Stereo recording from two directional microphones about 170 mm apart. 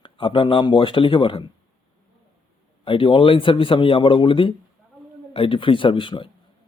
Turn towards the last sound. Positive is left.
turn(degrees=30)  # may be behind; listen again after turning